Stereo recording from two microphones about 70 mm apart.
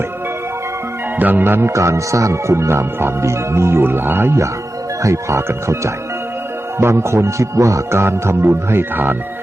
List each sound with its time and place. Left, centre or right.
1.2 s speech: right
1.7 s speech: right